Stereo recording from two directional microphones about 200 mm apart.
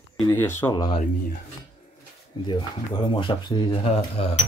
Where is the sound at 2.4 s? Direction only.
20° left (ahead or behind).